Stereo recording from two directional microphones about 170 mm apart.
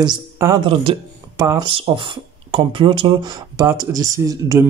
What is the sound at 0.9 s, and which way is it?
Speech, 35° right (ahead or behind).